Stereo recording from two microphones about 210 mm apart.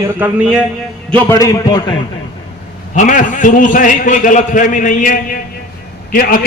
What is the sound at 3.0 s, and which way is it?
A man's voice, 40° left (ahead or behind).